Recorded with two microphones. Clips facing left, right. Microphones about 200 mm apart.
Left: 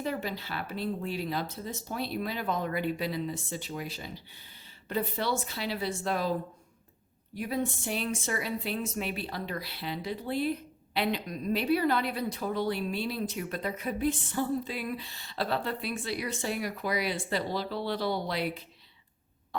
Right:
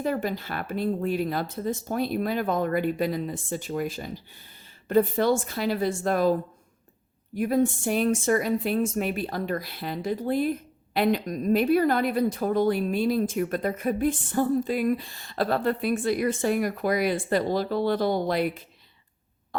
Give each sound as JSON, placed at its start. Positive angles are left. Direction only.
{"t": 0.0, "sound": "speech", "side_deg": -50}
{"t": 7.3, "sound": "speech", "side_deg": -50}